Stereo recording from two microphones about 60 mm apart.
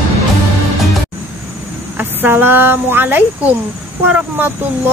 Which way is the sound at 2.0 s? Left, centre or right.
Right.